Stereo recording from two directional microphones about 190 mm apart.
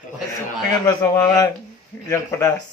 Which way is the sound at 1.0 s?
20° left (ahead or behind).